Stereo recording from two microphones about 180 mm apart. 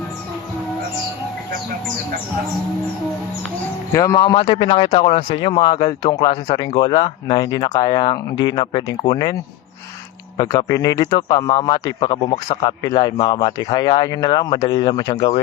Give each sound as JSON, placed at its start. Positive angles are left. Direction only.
{"t": 3.9, "sound": "speech", "side_deg": 20}